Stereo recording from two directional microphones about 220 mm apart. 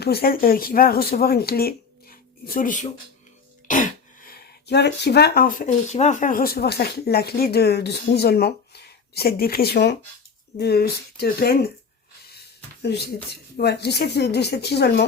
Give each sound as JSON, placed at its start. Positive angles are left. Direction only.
{"t": 0.0, "sound": "speech", "side_deg": 45}
{"t": 12.8, "sound": "speech", "side_deg": 50}